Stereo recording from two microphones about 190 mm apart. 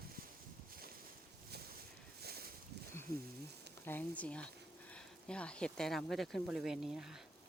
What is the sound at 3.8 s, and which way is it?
Speech, 10° left (ahead or behind).